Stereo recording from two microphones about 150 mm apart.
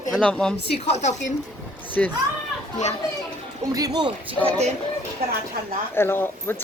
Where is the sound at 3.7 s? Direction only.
25° right (ahead or behind).